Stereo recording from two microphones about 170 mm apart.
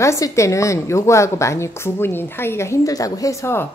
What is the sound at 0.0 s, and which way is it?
A woman's voice, 15° left (ahead or behind).